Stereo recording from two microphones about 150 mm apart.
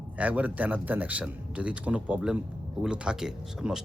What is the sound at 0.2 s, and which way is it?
A man's voice, 10° right (ahead or behind).